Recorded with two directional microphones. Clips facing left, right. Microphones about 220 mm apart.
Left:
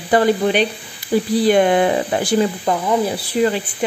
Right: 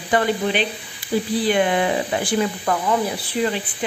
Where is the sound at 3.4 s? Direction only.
45° left (ahead or behind).